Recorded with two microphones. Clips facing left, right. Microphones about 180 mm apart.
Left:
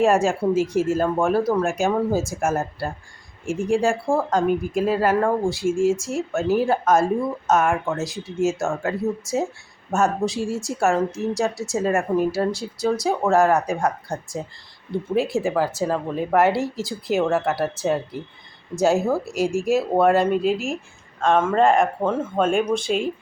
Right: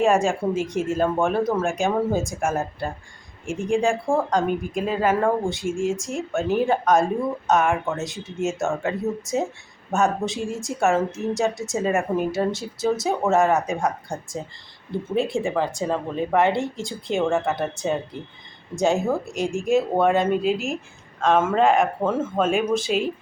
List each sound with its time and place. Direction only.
0.0 s speech: 5° left (ahead or behind)